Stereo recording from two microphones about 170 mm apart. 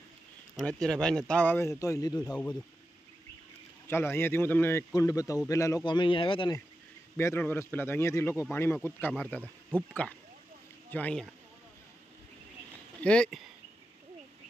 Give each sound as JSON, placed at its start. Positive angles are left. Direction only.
{"t": 0.7, "sound": "speech", "side_deg": 5}
{"t": 2.1, "sound": "speech", "side_deg": 5}
{"t": 3.8, "sound": "speech", "side_deg": 15}
{"t": 5.9, "sound": "speech", "side_deg": 30}
{"t": 7.2, "sound": "speech", "side_deg": 15}
{"t": 13.0, "sound": "speech", "side_deg": 5}